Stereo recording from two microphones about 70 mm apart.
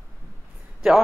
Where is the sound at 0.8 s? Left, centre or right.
Centre.